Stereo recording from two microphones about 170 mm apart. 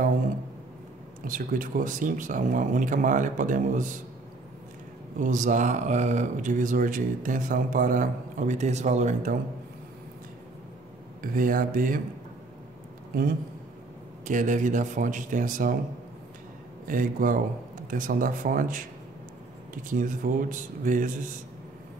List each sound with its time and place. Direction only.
1.2 s speech: 55° right (ahead or behind)
5.2 s speech: 45° right (ahead or behind)
11.3 s speech: 55° right (ahead or behind)
14.2 s speech: 50° right (ahead or behind)
16.8 s speech: 55° right (ahead or behind)